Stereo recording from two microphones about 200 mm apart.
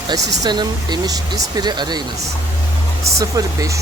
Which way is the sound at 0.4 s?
20° right (ahead or behind).